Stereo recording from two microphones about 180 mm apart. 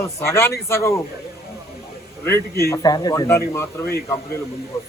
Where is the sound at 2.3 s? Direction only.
15° left (ahead or behind).